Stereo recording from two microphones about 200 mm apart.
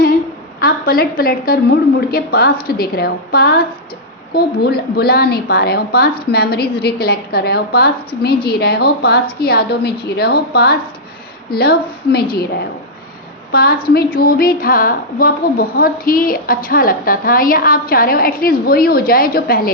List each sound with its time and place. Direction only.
0.6 s speech: 45° left (ahead or behind)
13.5 s a woman's voice: 50° left (ahead or behind)